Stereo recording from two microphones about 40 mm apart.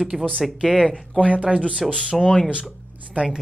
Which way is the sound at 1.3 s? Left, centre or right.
Right.